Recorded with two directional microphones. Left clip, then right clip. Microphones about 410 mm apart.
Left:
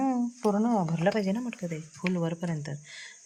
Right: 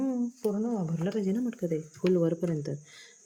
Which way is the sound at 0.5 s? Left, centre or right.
Left.